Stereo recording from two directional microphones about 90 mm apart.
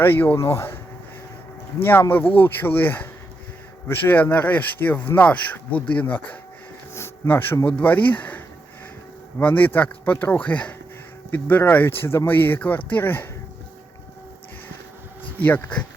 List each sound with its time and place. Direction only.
0.0 s speech: 20° left (ahead or behind)
1.8 s speech: 25° left (ahead or behind)
6.9 s a sound: 25° left (ahead or behind)
7.7 s speech: 15° left (ahead or behind)
9.4 s speech: 20° left (ahead or behind)
15.4 s speech: 20° left (ahead or behind)